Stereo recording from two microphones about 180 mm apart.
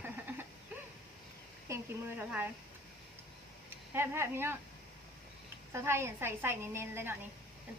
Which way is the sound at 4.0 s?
15° right (ahead or behind).